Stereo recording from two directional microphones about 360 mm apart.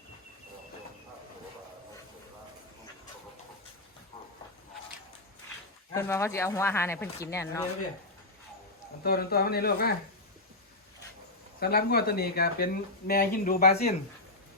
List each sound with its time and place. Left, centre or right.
5.9 s speech: centre
9.0 s speech: left
11.6 s speech: left